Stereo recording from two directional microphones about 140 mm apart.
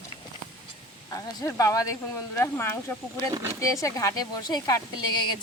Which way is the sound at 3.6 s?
25° left (ahead or behind).